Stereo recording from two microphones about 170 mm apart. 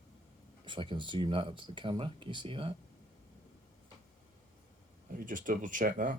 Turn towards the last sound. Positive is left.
turn(degrees=-55)  # may be behind; listen again after turning